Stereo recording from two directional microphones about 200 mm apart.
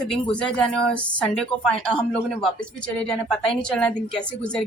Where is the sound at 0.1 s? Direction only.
5° left (ahead or behind).